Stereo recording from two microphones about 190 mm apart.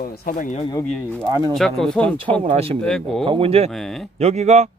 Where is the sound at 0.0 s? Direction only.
45° left (ahead or behind).